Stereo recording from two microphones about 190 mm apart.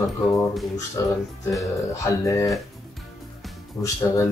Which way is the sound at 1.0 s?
15° left (ahead or behind).